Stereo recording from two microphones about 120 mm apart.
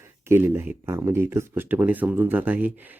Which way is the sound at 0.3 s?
20° right (ahead or behind).